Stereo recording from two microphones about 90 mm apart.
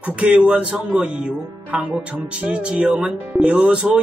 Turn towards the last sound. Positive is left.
turn(degrees=-10)  # may be behind; listen again after turning